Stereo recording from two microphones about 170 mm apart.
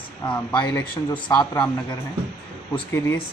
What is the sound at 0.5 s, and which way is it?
Speech, 25° left (ahead or behind).